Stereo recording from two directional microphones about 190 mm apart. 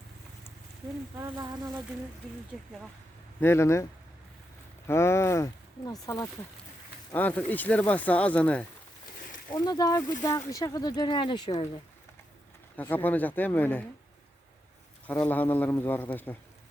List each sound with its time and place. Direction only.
1.2 s speech: 15° right (ahead or behind)
3.4 s speech: 15° left (ahead or behind)
4.9 s speech: 15° left (ahead or behind)
9.5 s speech: 20° left (ahead or behind)
12.7 s speech: 10° left (ahead or behind)
15.3 s speech: 10° left (ahead or behind)